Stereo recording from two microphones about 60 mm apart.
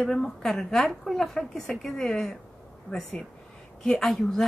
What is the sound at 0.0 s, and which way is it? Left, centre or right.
Speech, centre.